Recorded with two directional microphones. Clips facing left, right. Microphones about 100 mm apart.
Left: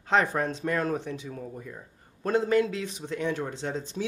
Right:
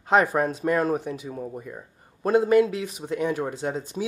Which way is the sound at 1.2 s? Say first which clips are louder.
Right 4 dB; 20° right (ahead or behind).